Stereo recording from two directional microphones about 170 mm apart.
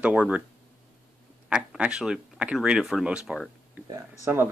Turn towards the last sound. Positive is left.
turn(degrees=-15)  # may be behind; listen again after turning